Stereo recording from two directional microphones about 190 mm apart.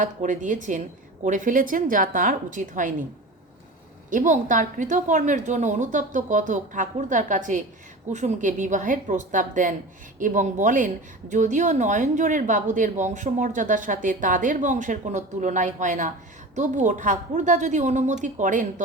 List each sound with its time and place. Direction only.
0.0 s a woman's voice: 40° right (ahead or behind)
4.1 s a woman's voice: 40° right (ahead or behind)